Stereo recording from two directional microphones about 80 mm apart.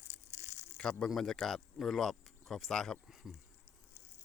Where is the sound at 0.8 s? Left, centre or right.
Centre.